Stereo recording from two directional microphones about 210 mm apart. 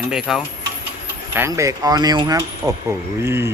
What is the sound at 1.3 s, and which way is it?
Speech, 15° right (ahead or behind).